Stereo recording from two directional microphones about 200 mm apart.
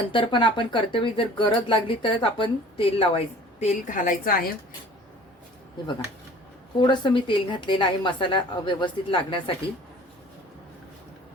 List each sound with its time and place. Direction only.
0.1 s speech: 25° left (ahead or behind); by 4.5 s 45° left (ahead or behind)
6.7 s speech: 20° left (ahead or behind)